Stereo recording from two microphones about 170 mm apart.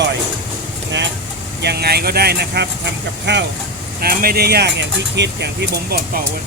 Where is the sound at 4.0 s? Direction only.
60° right (ahead or behind).